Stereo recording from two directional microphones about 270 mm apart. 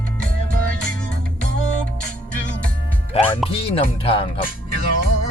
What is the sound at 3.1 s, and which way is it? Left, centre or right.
Speech, left.